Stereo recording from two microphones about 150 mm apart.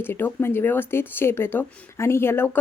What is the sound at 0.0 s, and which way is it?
Speech, 15° left (ahead or behind).